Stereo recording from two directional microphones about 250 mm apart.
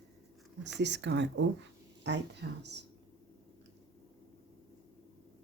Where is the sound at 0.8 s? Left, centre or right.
Right.